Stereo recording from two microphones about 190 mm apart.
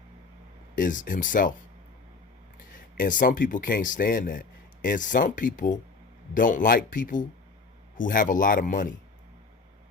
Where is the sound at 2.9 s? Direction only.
45° left (ahead or behind).